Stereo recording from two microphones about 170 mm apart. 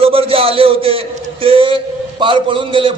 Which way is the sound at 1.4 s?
30° right (ahead or behind).